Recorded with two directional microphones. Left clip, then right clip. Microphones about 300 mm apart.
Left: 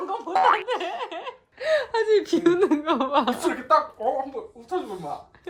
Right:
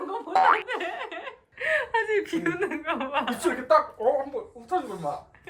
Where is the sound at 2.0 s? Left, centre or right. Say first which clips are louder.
Left 5 dB; centre.